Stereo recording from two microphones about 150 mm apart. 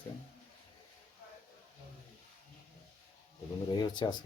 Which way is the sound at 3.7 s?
30° left (ahead or behind).